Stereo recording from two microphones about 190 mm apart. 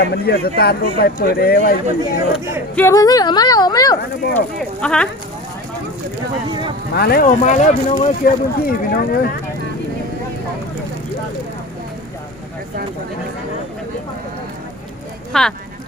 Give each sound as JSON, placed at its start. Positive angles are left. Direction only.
{"t": 0.0, "sound": "speech", "side_deg": 55}
{"t": 2.0, "sound": "speech", "side_deg": -15}
{"t": 2.7, "sound": "speech", "side_deg": 15}
{"t": 4.8, "sound": "speech", "side_deg": 5}
{"t": 6.5, "sound": "speech", "side_deg": -25}
{"t": 6.9, "sound": "speech", "side_deg": 55}
{"t": 15.3, "sound": "speech", "side_deg": 5}